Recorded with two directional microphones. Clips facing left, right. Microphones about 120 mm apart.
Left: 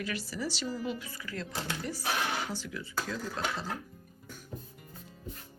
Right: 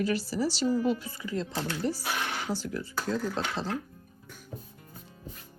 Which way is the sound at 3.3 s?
25° right (ahead or behind).